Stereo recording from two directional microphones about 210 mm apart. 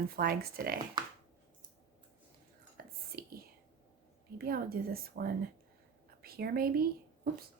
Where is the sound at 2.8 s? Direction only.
45° right (ahead or behind).